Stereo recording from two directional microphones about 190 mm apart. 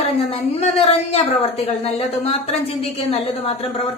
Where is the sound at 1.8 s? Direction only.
30° left (ahead or behind).